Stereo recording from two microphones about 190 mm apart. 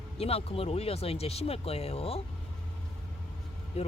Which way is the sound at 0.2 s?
30° left (ahead or behind).